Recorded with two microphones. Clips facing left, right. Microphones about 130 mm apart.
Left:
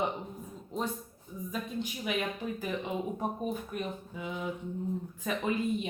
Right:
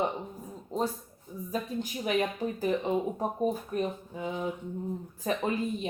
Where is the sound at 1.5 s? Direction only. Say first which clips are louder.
Right 3 dB; 40° right (ahead or behind).